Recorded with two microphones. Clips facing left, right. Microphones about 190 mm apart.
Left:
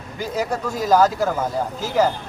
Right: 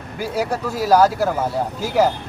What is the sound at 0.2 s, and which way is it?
Speech, 10° right (ahead or behind).